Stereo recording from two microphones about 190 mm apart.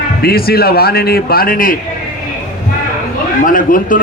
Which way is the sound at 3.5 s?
45° left (ahead or behind).